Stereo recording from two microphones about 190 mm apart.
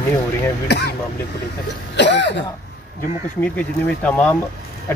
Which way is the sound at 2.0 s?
65° left (ahead or behind).